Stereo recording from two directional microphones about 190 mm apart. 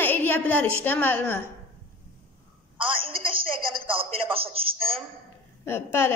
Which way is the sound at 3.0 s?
30° right (ahead or behind).